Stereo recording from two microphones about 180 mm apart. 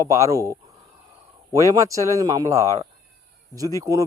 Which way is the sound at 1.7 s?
20° right (ahead or behind).